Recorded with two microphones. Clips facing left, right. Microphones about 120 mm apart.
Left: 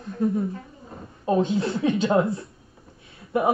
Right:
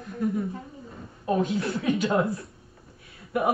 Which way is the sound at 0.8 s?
25° left (ahead or behind).